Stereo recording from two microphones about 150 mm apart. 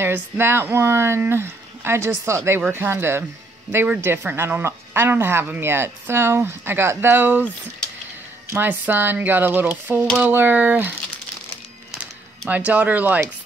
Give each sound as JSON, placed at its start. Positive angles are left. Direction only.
{"t": 0.0, "sound": "speech", "side_deg": -15}
{"t": 8.5, "sound": "speech", "side_deg": -15}
{"t": 11.9, "sound": "a sound", "side_deg": -10}